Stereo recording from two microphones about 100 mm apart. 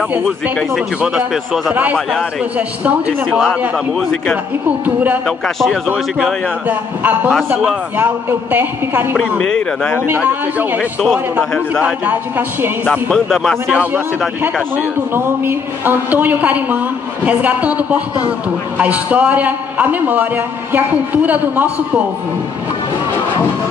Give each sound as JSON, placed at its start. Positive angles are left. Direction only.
{"t": 1.0, "sound": "a woman's voice", "side_deg": -5}
{"t": 4.6, "sound": "a woman's voice", "side_deg": -15}
{"t": 6.7, "sound": "a woman's voice", "side_deg": -15}
{"t": 9.1, "sound": "speech", "side_deg": 10}
{"t": 10.0, "sound": "a man's voice", "side_deg": -20}
{"t": 13.1, "sound": "speech", "side_deg": 5}
{"t": 13.7, "sound": "a woman's voice", "side_deg": -10}
{"t": 21.3, "sound": "a woman's voice", "side_deg": -15}